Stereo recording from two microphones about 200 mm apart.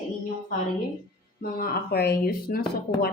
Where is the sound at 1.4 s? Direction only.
50° left (ahead or behind).